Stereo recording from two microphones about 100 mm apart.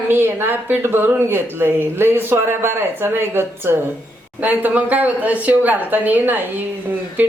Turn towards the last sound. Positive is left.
turn(degrees=-20)  # may be behind; listen again after turning